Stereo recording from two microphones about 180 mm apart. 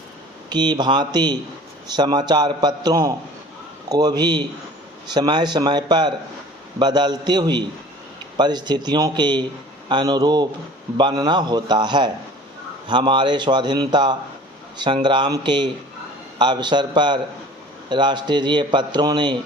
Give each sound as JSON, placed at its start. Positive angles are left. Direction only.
{"t": 0.5, "sound": "a man's voice", "side_deg": -25}